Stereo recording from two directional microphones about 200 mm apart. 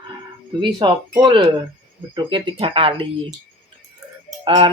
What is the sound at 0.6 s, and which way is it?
Speech, 20° right (ahead or behind).